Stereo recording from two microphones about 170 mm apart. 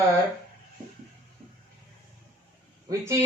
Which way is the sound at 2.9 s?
15° right (ahead or behind).